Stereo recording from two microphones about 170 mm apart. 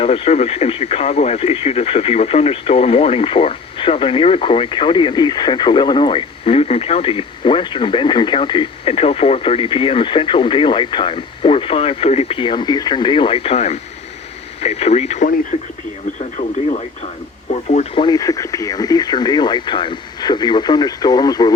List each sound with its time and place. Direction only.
0.0 s speech: 35° left (ahead or behind)
18.0 s speech: 20° left (ahead or behind)